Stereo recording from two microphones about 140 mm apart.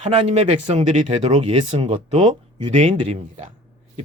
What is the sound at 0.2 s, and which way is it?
Speech, 45° right (ahead or behind).